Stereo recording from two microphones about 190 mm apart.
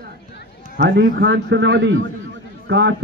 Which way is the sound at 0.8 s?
60° right (ahead or behind).